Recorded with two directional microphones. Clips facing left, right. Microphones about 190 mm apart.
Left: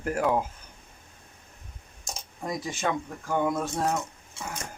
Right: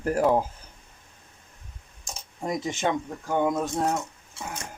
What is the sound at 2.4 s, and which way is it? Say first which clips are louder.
Speech: right 3 dB; 20° right (ahead or behind).